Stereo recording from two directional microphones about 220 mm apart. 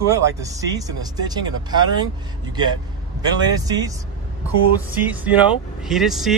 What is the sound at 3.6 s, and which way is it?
Speech, 15° right (ahead or behind).